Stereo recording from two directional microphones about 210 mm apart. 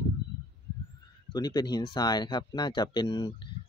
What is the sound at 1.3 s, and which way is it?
Speech, 20° left (ahead or behind).